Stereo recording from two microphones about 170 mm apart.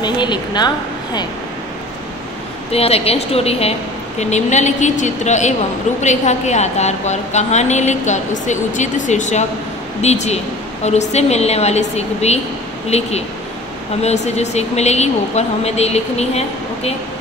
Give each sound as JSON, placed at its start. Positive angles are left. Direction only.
{"t": 0.0, "sound": "a woman's voice", "side_deg": 25}
{"t": 2.7, "sound": "a woman's voice", "side_deg": 35}